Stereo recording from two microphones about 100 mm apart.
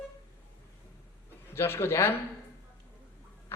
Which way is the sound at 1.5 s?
25° left (ahead or behind).